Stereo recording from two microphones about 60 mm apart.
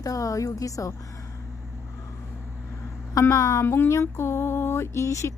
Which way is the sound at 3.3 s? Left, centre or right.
Left.